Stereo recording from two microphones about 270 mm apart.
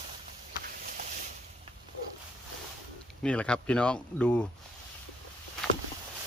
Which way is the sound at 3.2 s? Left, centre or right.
Centre.